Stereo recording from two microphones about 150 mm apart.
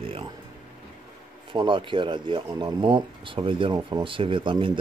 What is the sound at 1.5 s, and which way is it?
Speech, 35° right (ahead or behind).